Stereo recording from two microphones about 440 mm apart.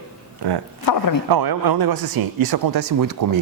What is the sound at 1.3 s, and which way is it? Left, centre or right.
Speech, right.